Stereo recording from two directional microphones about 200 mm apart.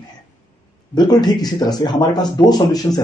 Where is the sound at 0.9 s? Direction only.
20° left (ahead or behind).